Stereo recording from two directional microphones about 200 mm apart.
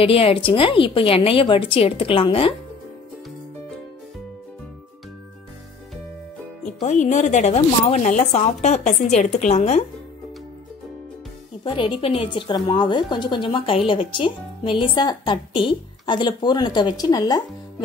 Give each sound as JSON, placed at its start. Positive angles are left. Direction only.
{"t": 0.0, "sound": "a woman's voice", "side_deg": 30}
{"t": 6.8, "sound": "speech", "side_deg": 40}
{"t": 11.6, "sound": "a woman's voice", "side_deg": 25}